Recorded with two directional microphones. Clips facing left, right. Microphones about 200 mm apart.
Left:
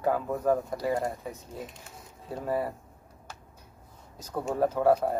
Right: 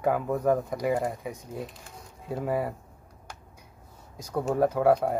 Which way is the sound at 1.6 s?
Centre (ahead or behind).